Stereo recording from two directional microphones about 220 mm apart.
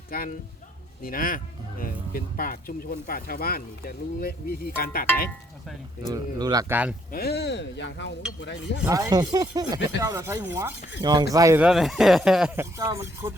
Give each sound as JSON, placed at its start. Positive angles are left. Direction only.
{"t": 0.1, "sound": "speech", "side_deg": 40}
{"t": 6.1, "sound": "speech", "side_deg": -15}
{"t": 7.1, "sound": "speech", "side_deg": 45}
{"t": 8.9, "sound": "speech", "side_deg": -15}
{"t": 11.6, "sound": "speech", "side_deg": 0}